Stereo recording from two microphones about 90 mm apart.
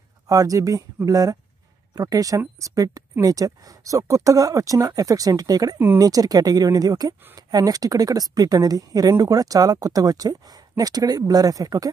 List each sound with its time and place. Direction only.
0.3 s speech: 40° right (ahead or behind)